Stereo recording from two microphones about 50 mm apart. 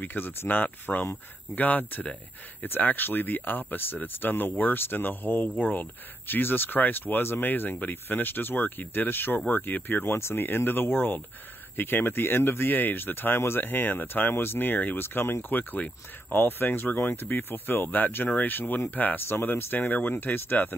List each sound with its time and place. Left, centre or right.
0.0 s speech: left
14.3 s speech: left
15.0 s speech: left
19.2 s speech: left